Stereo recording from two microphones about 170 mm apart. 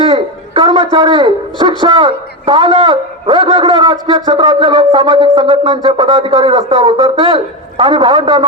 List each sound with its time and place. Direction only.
0.5 s wind instrument: 30° right (ahead or behind)